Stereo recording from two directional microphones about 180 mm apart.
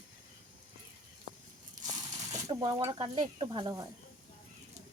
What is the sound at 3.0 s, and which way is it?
Speech, 20° right (ahead or behind).